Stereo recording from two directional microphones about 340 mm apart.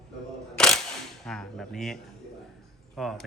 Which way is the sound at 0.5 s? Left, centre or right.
Centre.